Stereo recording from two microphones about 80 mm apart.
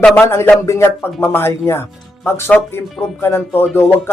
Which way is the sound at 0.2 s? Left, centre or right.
Left.